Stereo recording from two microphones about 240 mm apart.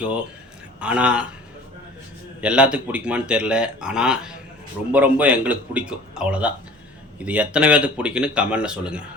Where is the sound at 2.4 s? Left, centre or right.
Centre.